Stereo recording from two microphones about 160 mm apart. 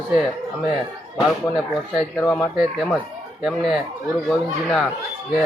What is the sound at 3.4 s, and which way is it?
Speech, centre (ahead or behind).